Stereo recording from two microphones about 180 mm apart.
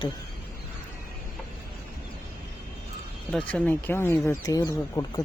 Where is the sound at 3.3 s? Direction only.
5° left (ahead or behind).